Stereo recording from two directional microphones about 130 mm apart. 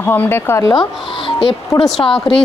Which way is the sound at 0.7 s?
40° left (ahead or behind).